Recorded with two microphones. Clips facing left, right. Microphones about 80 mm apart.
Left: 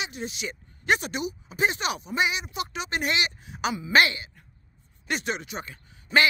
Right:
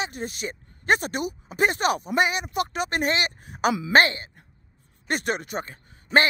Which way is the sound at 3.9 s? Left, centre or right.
Right.